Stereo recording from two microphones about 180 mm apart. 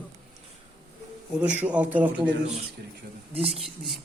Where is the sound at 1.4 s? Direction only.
10° right (ahead or behind).